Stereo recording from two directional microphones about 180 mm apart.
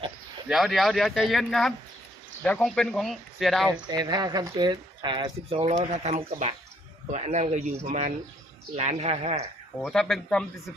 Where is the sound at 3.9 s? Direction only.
25° right (ahead or behind).